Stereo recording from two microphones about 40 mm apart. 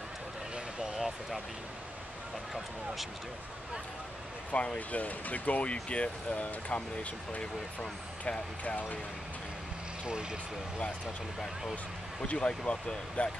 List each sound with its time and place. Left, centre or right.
0.9 s a sound: centre
4.5 s speech: left
8.6 s speech: left
12.4 s speech: left